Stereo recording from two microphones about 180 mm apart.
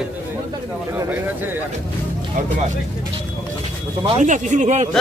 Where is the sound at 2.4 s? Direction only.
45° right (ahead or behind).